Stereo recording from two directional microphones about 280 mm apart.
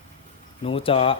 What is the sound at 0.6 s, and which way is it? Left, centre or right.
Speech, centre.